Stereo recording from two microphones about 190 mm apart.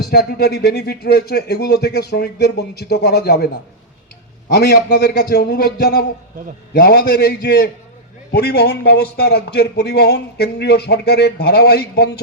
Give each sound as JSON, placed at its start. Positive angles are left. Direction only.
{"t": 0.1, "sound": "speech", "side_deg": 55}